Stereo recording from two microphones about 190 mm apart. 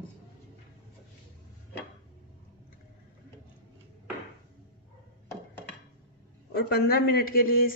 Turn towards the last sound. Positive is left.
turn(degrees=50)  # may be behind; listen again after turning